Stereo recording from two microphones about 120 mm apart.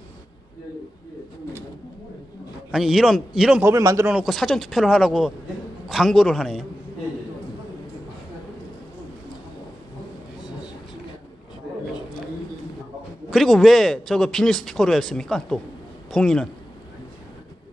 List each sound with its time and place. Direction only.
2.7 s speech: centre (ahead or behind)
3.6 s a man's voice: 25° right (ahead or behind)
4.1 s a man's voice: centre (ahead or behind)
13.3 s speech: centre (ahead or behind)